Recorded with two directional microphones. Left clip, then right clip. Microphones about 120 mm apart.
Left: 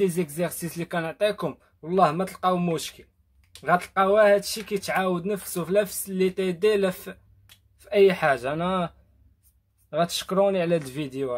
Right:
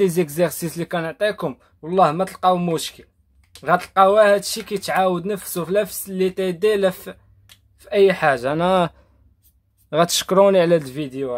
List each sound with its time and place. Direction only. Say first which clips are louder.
0.0 s speech: right 7 dB; 45° right (ahead or behind)
0.7 s speech: right 1 dB; 20° right (ahead or behind)
8.6 s speech: right 9 dB; 55° right (ahead or behind)
10.8 s speech: right 5 dB; 15° right (ahead or behind)
11.1 s speech: right 3 dB; 5° right (ahead or behind)